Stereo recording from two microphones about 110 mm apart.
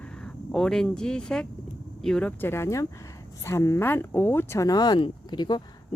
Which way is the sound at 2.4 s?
20° left (ahead or behind).